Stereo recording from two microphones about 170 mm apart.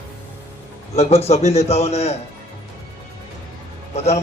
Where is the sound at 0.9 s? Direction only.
35° left (ahead or behind).